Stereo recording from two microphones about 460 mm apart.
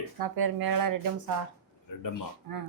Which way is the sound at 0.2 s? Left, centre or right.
Right.